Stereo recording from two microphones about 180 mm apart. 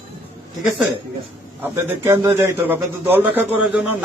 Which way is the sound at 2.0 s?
15° right (ahead or behind).